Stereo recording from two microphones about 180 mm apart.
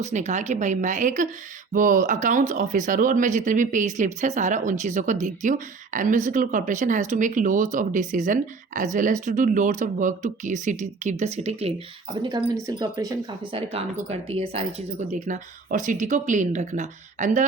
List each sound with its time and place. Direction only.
0.0 s a woman's voice: 40° right (ahead or behind)
12.6 s speech: 20° right (ahead or behind)
13.5 s speech: 35° right (ahead or behind)